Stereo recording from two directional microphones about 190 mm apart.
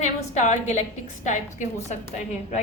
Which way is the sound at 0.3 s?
40° left (ahead or behind).